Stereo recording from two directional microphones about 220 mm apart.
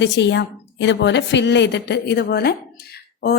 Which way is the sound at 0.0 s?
55° left (ahead or behind).